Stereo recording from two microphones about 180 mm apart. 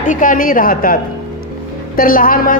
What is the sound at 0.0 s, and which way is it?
Speech, 45° left (ahead or behind).